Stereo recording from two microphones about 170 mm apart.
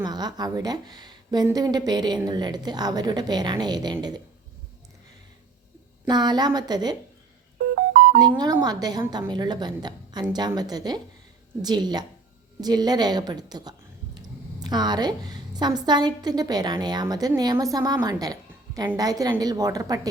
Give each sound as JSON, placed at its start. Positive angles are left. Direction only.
{"t": 0.0, "sound": "a woman's voice", "side_deg": -25}
{"t": 6.1, "sound": "a woman's voice", "side_deg": -25}
{"t": 7.8, "sound": "music", "side_deg": -55}
{"t": 8.2, "sound": "a woman's voice", "side_deg": -20}